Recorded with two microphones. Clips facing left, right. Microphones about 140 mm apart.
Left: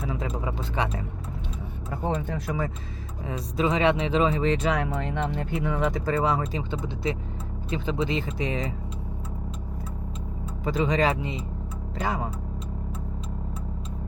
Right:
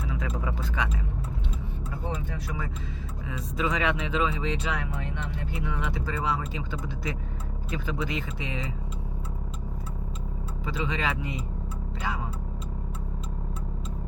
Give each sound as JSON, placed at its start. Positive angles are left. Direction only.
{"t": 0.2, "sound": "speech", "side_deg": 25}
{"t": 3.2, "sound": "speech", "side_deg": 35}
{"t": 6.6, "sound": "speech", "side_deg": 25}
{"t": 10.7, "sound": "speech", "side_deg": 45}